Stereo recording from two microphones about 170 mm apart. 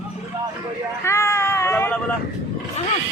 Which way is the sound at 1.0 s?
15° left (ahead or behind).